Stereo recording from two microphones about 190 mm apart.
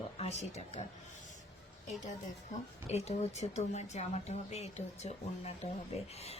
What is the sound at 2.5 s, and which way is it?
A woman's voice, 35° left (ahead or behind).